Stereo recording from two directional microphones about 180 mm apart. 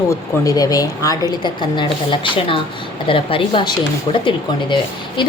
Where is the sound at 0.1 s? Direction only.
20° left (ahead or behind).